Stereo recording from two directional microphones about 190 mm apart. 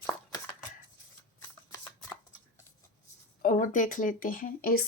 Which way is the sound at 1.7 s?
15° left (ahead or behind).